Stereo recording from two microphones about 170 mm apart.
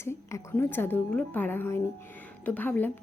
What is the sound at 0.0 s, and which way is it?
A woman's voice, 15° left (ahead or behind).